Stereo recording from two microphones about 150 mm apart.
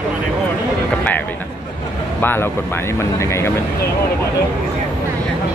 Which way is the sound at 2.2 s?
15° left (ahead or behind).